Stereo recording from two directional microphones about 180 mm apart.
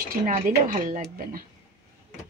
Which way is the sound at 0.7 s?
40° right (ahead or behind).